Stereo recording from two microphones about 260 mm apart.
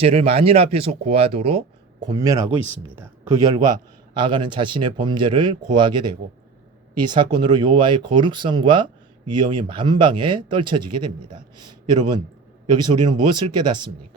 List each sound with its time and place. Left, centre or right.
0.0 s speech: right